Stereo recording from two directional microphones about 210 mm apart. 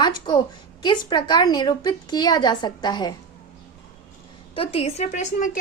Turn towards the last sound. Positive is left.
turn(degrees=35)  # may be behind; listen again after turning